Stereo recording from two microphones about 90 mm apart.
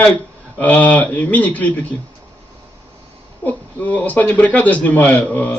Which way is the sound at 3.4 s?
15° left (ahead or behind).